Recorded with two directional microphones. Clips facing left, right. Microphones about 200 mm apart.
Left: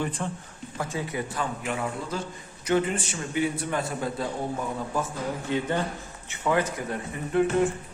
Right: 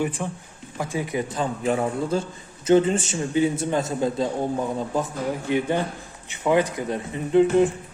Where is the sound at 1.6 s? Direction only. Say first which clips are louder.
Right 7 dB; 35° right (ahead or behind).